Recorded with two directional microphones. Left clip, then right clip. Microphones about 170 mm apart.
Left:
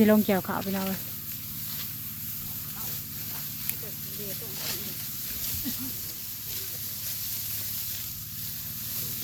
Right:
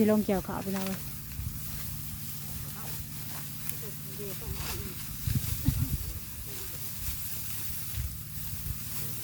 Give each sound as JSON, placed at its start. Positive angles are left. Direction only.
{"t": 0.0, "sound": "speech", "side_deg": 0}
{"t": 5.7, "sound": "hiss", "side_deg": -60}